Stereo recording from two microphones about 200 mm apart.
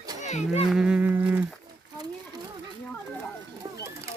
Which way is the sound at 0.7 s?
5° right (ahead or behind).